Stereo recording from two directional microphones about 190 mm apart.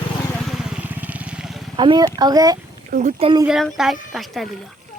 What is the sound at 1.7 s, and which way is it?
Speech, 25° right (ahead or behind).